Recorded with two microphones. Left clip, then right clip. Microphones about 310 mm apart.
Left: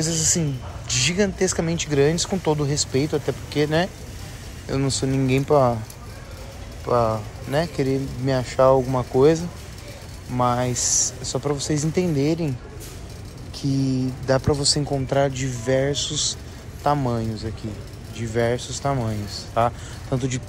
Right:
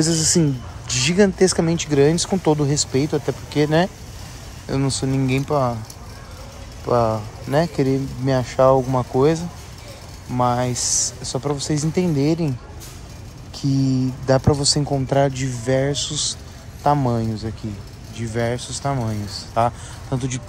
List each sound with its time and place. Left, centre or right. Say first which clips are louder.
0.0 s speech: right 5 dB; right
6.9 s speech: right 2 dB; centre
13.6 s speech: right 3 dB; centre